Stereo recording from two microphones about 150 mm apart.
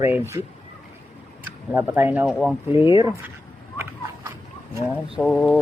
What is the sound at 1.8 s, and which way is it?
Speech, 15° right (ahead or behind).